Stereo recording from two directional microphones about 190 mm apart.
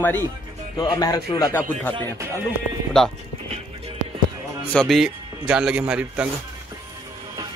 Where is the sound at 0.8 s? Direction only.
20° left (ahead or behind).